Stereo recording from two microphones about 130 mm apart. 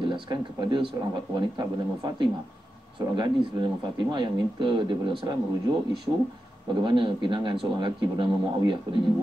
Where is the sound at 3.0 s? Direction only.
40° right (ahead or behind).